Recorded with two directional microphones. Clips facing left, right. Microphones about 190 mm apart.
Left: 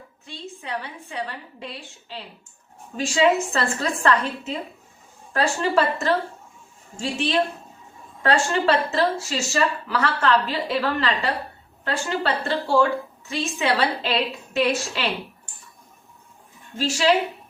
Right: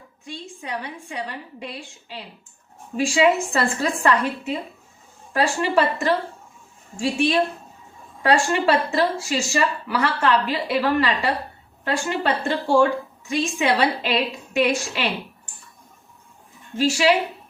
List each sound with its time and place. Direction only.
0.3 s speech: 15° right (ahead or behind)
16.7 s speech: 10° right (ahead or behind)